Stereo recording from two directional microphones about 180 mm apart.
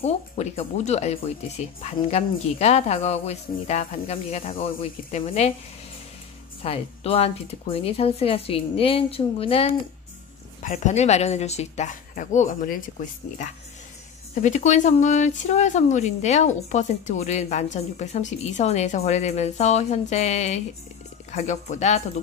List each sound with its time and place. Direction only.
0.0 s speech: 35° left (ahead or behind)
4.6 s speech: 30° left (ahead or behind)
6.6 s speech: 30° left (ahead or behind); by 12.8 s 50° left (ahead or behind)
14.3 s speech: 40° left (ahead or behind)